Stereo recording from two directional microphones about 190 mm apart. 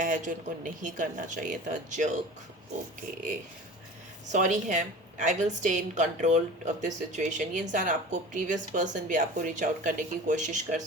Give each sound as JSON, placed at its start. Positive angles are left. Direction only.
{"t": 0.0, "sound": "a woman's voice", "side_deg": -40}
{"t": 4.3, "sound": "a woman's voice", "side_deg": -40}